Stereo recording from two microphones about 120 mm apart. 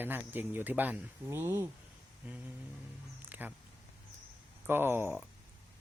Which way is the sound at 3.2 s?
15° right (ahead or behind).